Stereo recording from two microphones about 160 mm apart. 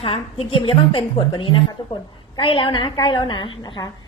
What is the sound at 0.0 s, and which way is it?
A woman's voice, 35° left (ahead or behind).